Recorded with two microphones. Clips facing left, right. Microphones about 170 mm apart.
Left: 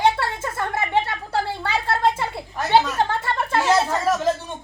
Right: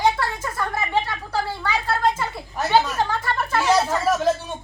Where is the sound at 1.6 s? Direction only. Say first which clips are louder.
Even; 25° left (ahead or behind).